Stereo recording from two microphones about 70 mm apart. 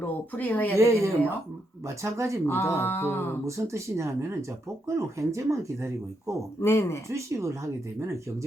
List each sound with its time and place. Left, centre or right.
0.3 s speech: left
0.8 s speech: right
2.5 s a sound: left
3.4 s speech: right
6.6 s a sound: left
7.1 s speech: right